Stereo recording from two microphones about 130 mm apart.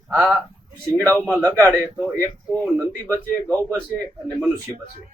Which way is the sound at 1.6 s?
15° right (ahead or behind).